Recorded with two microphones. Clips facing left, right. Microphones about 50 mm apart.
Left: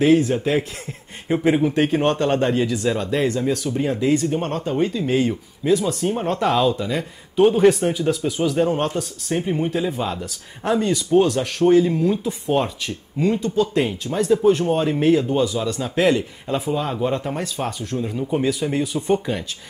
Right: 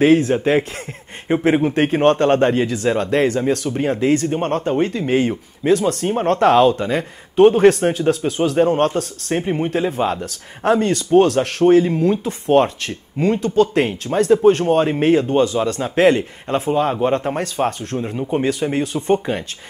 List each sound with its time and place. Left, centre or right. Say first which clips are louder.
0.0 s speech: right 3 dB; right
5.7 s speech: right 3 dB; right
9.4 s speech: right 2 dB; right
10.8 s speech: right 2 dB; right